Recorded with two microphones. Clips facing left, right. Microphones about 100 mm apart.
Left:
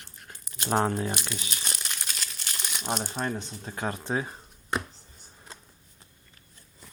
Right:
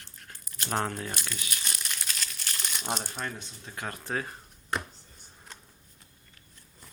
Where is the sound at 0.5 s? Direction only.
20° left (ahead or behind).